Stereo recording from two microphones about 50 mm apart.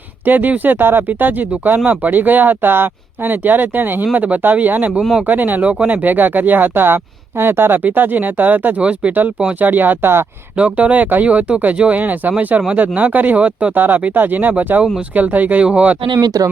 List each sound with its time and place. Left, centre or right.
0.3 s speech: right
7.9 s speech: right
8.8 s speech: right
9.6 s speech: right
10.6 s speech: right
13.7 s speech: right